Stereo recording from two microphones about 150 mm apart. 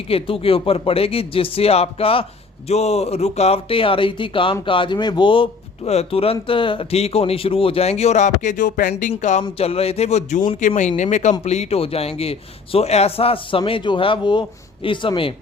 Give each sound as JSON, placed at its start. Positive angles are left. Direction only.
{"t": 0.1, "sound": "speech", "side_deg": 35}
{"t": 9.4, "sound": "speech", "side_deg": 40}